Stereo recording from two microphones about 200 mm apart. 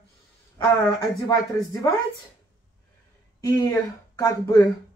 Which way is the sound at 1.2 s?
20° left (ahead or behind).